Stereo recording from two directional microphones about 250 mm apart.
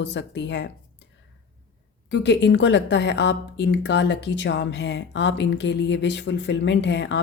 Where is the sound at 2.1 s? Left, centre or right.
Left.